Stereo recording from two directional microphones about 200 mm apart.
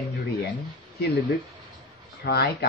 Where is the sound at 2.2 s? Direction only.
55° left (ahead or behind).